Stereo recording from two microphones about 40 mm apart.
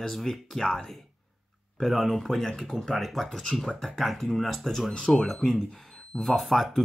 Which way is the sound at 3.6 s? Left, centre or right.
Centre.